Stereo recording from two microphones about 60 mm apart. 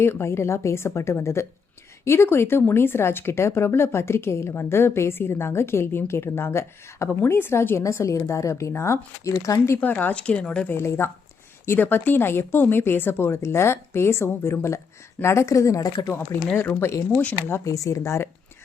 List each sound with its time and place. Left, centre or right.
0.0 s speech: left
7.8 s a woman's voice: left
8.7 s speech: left
9.8 s speech: left
10.7 s a woman's voice: left
16.3 s speech: left
17.6 s a woman's voice: left